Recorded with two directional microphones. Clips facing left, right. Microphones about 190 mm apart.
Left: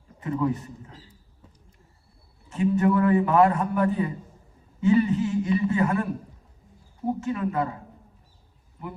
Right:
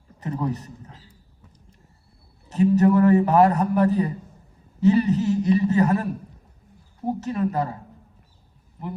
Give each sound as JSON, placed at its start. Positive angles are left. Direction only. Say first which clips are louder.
{"t": 0.2, "sound": "a man's voice", "louder": "left 2 dB", "side_deg": -40}
{"t": 2.5, "sound": "a man's voice", "louder": "right 4 dB", "side_deg": -40}
{"t": 7.2, "sound": "a man's voice", "louder": "right 3 dB", "side_deg": -40}